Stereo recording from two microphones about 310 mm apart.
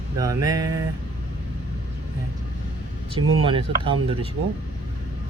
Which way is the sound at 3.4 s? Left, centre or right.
Centre.